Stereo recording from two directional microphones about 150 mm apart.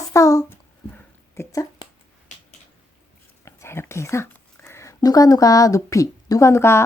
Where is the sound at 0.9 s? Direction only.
20° left (ahead or behind).